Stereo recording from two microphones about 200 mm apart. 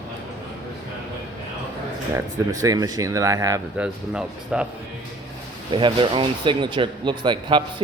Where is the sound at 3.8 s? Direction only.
5° right (ahead or behind).